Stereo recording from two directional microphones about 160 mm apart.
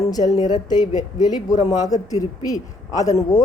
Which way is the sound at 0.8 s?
50° left (ahead or behind).